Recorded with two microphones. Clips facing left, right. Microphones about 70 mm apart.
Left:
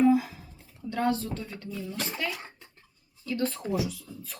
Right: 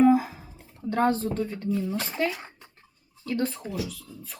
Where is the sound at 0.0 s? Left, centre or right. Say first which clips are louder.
Right 3 dB; right.